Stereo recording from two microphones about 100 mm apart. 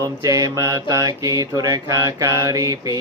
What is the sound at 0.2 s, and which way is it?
Mantra, 35° right (ahead or behind).